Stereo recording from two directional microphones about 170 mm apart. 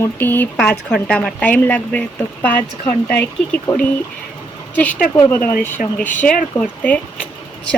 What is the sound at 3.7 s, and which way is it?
Speech, 25° left (ahead or behind).